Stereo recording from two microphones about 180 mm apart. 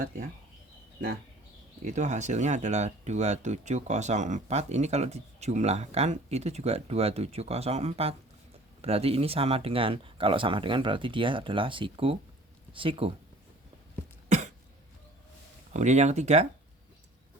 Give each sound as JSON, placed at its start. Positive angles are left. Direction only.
{"t": 1.8, "sound": "speech", "side_deg": -40}
{"t": 14.3, "sound": "cough", "side_deg": -40}
{"t": 15.7, "sound": "speech", "side_deg": -40}